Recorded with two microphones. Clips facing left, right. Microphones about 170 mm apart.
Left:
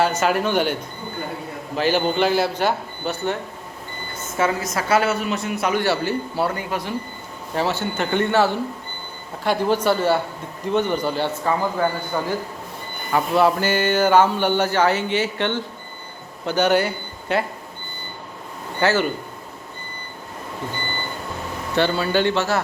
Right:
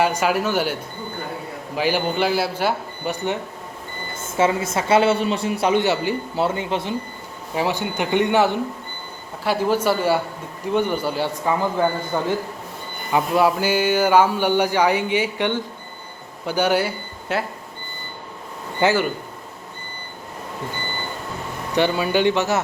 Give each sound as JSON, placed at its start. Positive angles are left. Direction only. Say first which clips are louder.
{"t": 0.0, "sound": "speech", "louder": "even", "side_deg": -10}
{"t": 4.3, "sound": "a man's voice", "louder": "right 2 dB", "side_deg": -25}
{"t": 5.8, "sound": "a man's voice", "louder": "even", "side_deg": -20}
{"t": 7.5, "sound": "speech", "louder": "even", "side_deg": -15}
{"t": 9.4, "sound": "a man's voice", "louder": "even", "side_deg": -5}
{"t": 18.8, "sound": "speech", "louder": "right 1 dB", "side_deg": -15}
{"t": 21.8, "sound": "speech", "louder": "right 1 dB", "side_deg": -15}